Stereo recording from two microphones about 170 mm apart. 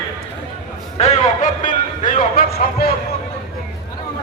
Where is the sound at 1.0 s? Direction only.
45° left (ahead or behind); by 2.9 s 60° left (ahead or behind).